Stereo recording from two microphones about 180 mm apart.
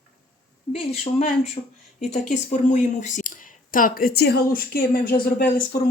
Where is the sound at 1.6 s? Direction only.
35° left (ahead or behind); by 5.7 s 55° left (ahead or behind).